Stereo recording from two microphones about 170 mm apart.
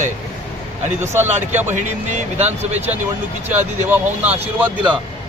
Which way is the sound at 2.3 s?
40° right (ahead or behind).